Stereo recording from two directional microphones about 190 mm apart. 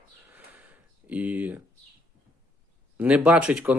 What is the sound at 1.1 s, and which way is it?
Speech, 10° right (ahead or behind).